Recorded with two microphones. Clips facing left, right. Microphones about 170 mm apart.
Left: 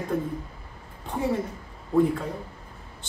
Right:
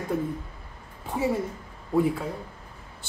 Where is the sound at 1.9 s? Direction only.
5° right (ahead or behind).